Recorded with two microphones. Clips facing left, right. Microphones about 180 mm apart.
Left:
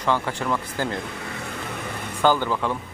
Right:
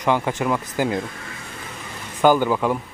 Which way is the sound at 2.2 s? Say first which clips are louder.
Right 4 dB; 15° right (ahead or behind).